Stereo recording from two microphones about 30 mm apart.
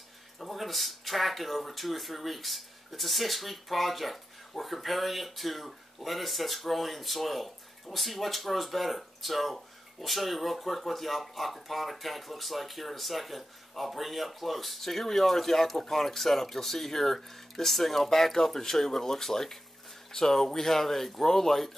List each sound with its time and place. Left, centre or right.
0.6 s speech: centre